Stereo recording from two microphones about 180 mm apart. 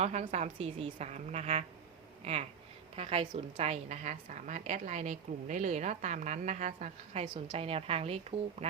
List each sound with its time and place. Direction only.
0.0 s a woman's voice: 40° right (ahead or behind)